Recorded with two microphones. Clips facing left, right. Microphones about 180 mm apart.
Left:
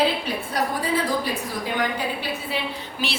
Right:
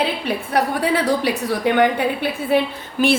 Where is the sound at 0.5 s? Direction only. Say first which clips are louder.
Right 5 dB; 70° right (ahead or behind).